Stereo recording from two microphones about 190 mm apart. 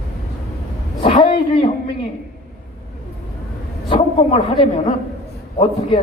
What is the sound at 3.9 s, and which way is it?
A woman's voice, 30° left (ahead or behind).